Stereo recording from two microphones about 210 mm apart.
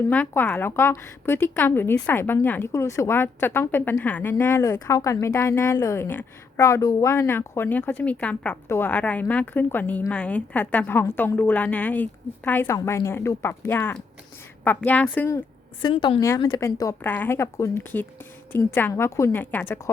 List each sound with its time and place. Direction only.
0.1 s a woman's voice: 5° left (ahead or behind)
15.8 s a woman's voice: 20° left (ahead or behind)